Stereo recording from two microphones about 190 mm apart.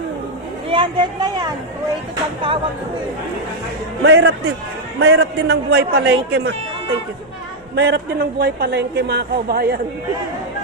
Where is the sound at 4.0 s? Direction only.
65° right (ahead or behind).